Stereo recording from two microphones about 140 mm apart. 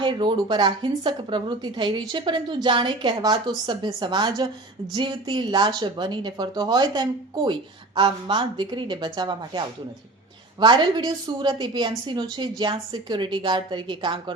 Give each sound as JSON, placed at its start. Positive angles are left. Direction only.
{"t": 0.0, "sound": "a woman's voice", "side_deg": -35}